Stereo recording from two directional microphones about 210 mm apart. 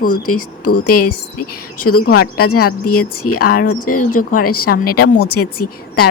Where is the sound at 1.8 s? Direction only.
90° left.